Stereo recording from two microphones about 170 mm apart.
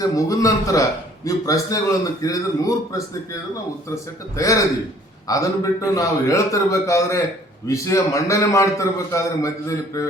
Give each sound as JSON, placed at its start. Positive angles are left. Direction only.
{"t": 0.0, "sound": "a man's voice", "side_deg": 20}
{"t": 4.4, "sound": "a man's voice", "side_deg": 20}